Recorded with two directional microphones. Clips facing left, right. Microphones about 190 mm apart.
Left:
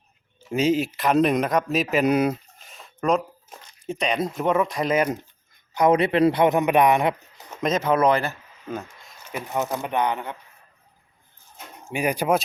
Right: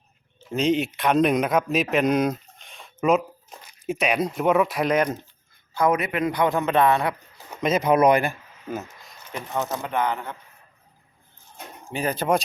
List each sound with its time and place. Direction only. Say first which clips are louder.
0.3 s speech: left 1 dB; 5° left (ahead or behind)
5.7 s speech: left 3 dB; 20° left (ahead or behind)
6.0 s speech: left 5 dB; 30° left (ahead or behind)
7.6 s speech: right 2 dB; 10° right (ahead or behind)
9.5 s speech: left 1 dB; 15° left (ahead or behind)
11.9 s speech: left 1 dB; 15° left (ahead or behind)